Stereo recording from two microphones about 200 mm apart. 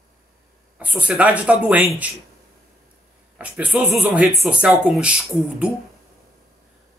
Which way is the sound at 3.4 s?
5° right (ahead or behind).